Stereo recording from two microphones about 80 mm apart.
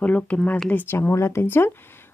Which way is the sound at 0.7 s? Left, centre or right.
Left.